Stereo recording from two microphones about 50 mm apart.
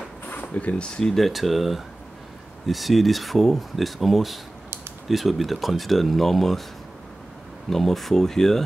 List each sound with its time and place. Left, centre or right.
0.3 s speech: left
1.1 s speech: centre
7.7 s speech: centre